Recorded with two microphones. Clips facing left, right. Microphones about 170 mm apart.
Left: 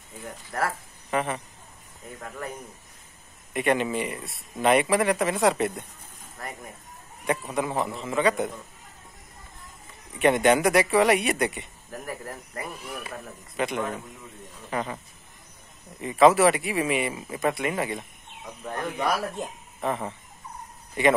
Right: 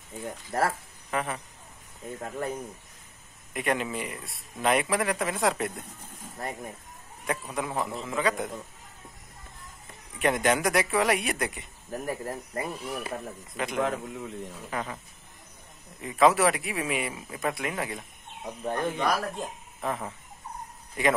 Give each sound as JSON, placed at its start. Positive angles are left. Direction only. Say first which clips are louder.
{"t": 0.2, "sound": "speech", "louder": "right 2 dB", "side_deg": -20}
{"t": 1.1, "sound": "speech", "louder": "left 4 dB", "side_deg": 0}
{"t": 2.1, "sound": "speech", "louder": "right 3 dB", "side_deg": -25}
{"t": 3.5, "sound": "speech", "louder": "left 5 dB", "side_deg": 0}
{"t": 7.2, "sound": "speech", "louder": "left 4 dB", "side_deg": 0}
{"t": 10.1, "sound": "speech", "louder": "left 5 dB", "side_deg": 0}
{"t": 11.9, "sound": "speech", "louder": "right 4 dB", "side_deg": -25}
{"t": 13.6, "sound": "speech", "louder": "even", "side_deg": 0}
{"t": 16.0, "sound": "speech", "louder": "left 4 dB", "side_deg": 0}
{"t": 18.4, "sound": "speech", "louder": "right 3 dB", "side_deg": -25}
{"t": 18.9, "sound": "speech", "louder": "left 1 dB", "side_deg": 5}